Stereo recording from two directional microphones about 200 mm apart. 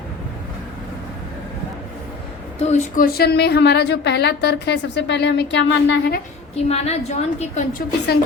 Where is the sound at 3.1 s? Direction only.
55° left (ahead or behind).